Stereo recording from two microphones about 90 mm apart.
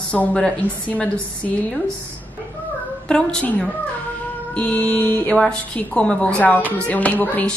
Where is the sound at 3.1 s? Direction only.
10° left (ahead or behind).